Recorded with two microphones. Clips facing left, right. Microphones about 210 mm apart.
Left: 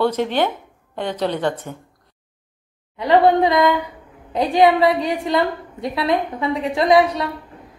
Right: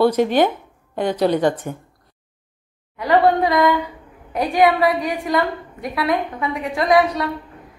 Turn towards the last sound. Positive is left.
turn(degrees=25)  # may be behind; listen again after turning